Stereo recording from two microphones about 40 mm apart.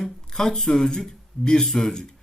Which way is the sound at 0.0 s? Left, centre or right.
Centre.